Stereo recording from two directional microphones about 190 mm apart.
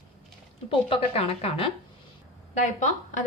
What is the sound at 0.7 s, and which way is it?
A woman's voice, 30° left (ahead or behind).